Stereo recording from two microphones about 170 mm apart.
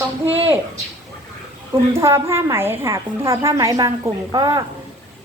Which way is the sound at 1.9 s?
15° right (ahead or behind).